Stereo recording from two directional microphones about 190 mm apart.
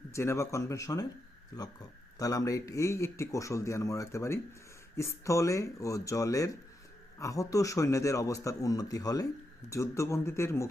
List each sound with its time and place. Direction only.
0.1 s speech: 15° left (ahead or behind)